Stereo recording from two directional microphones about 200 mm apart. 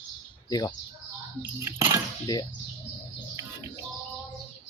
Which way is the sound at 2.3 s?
15° left (ahead or behind).